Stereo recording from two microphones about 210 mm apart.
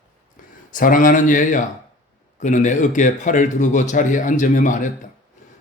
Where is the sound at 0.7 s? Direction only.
40° left (ahead or behind).